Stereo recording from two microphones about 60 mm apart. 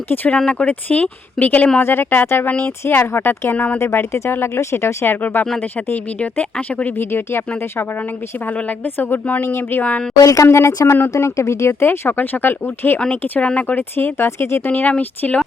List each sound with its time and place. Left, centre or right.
0.1 s speech: left
2.5 s speech: left
2.8 s speech: left
5.2 s speech: left
7.0 s speech: left
9.0 s speech: left
10.2 s speech: left
14.7 s speech: left